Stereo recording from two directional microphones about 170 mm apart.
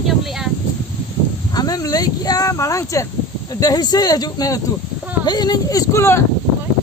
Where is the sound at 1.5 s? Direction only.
20° left (ahead or behind).